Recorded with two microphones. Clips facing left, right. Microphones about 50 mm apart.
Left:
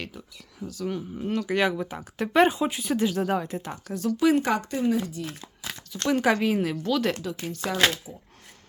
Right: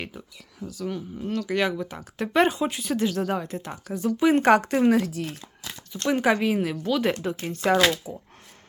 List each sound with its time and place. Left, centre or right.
0.6 s speech: centre
0.9 s speech: centre
3.9 s speech: centre
4.4 s speech: right
6.1 s speech: centre
7.2 s speech: right
8.1 s speech: right